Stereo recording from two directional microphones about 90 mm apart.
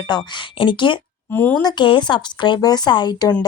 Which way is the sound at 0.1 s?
55° left (ahead or behind).